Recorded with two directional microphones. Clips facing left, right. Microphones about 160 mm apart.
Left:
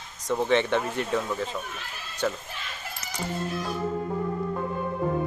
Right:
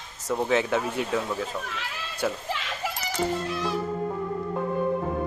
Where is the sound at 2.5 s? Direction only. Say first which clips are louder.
Right 7 dB; 90° right.